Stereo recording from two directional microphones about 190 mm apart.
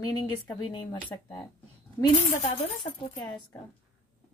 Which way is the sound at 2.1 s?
35° left (ahead or behind).